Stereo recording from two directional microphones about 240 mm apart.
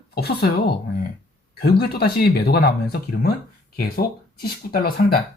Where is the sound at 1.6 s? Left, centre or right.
Left.